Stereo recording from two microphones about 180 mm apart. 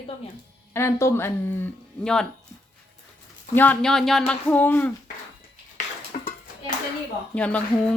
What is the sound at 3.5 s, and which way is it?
A woman's voice, 10° left (ahead or behind).